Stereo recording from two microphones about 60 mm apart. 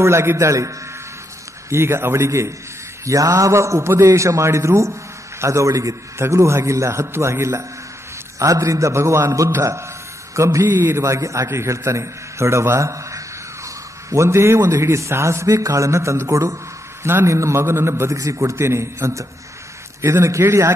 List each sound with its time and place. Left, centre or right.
0.0 s a man's voice: right
1.7 s a man's voice: right
8.4 s a man's voice: right
10.7 s a man's voice: right
11.1 s a man's voice: right
17.0 s a man's voice: right
18.1 s a man's voice: right